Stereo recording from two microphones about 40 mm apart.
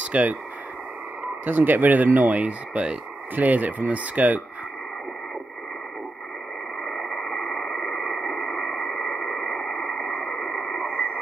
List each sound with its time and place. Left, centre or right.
0.1 s speech: right
1.4 s speech: right
6.8 s radio: centre